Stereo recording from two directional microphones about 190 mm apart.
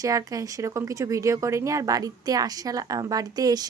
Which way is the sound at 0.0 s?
20° right (ahead or behind).